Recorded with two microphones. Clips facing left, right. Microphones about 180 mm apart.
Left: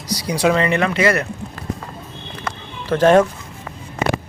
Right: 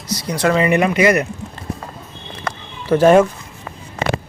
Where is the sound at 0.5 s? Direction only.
10° right (ahead or behind).